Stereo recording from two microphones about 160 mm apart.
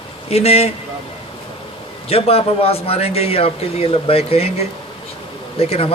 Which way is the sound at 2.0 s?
35° left (ahead or behind).